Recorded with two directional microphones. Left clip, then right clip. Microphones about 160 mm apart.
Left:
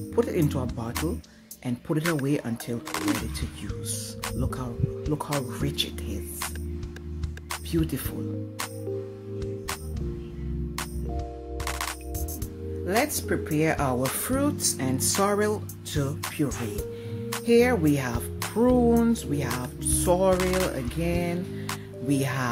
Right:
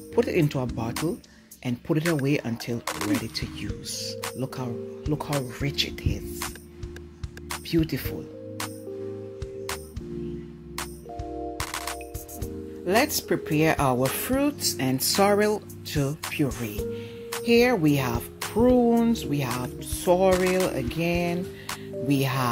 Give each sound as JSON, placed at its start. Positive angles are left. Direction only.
{"t": 0.1, "sound": "speech", "side_deg": -10}
{"t": 1.7, "sound": "speech", "side_deg": -10}
{"t": 7.7, "sound": "speech", "side_deg": -5}
{"t": 13.0, "sound": "speech", "side_deg": -20}
{"t": 19.5, "sound": "speech", "side_deg": 0}
{"t": 20.7, "sound": "speech", "side_deg": -15}
{"t": 21.6, "sound": "music", "side_deg": -10}